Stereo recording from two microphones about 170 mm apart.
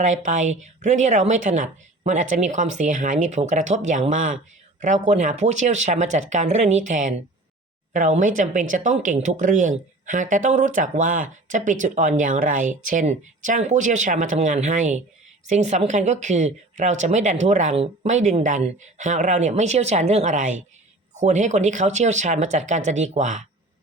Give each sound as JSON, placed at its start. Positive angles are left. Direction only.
{"t": 0.0, "sound": "speech", "side_deg": -45}